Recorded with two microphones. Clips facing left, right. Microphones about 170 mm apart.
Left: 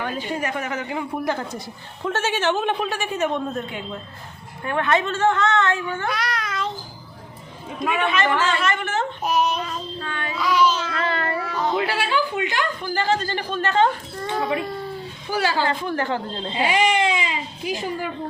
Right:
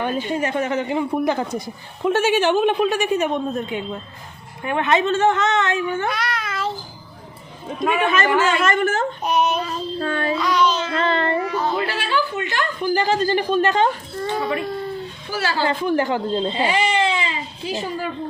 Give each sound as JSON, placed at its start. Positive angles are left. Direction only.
{"t": 0.0, "sound": "a woman's voice", "side_deg": -20}
{"t": 6.1, "sound": "child singing", "side_deg": 0}
{"t": 8.0, "sound": "a woman's voice", "side_deg": -45}
{"t": 8.3, "sound": "a woman's voice", "side_deg": -10}
{"t": 8.6, "sound": "a woman's voice", "side_deg": -45}
{"t": 9.2, "sound": "child singing", "side_deg": 0}
{"t": 9.6, "sound": "child singing", "side_deg": -35}
{"t": 10.4, "sound": "a sound", "side_deg": 5}
{"t": 10.8, "sound": "a sound", "side_deg": -25}
{"t": 11.6, "sound": "a sound", "side_deg": 15}
{"t": 12.8, "sound": "a woman's voice", "side_deg": -15}
{"t": 15.3, "sound": "a woman's voice", "side_deg": 15}
{"t": 15.6, "sound": "a woman's voice", "side_deg": -15}
{"t": 16.6, "sound": "baby cry", "side_deg": 10}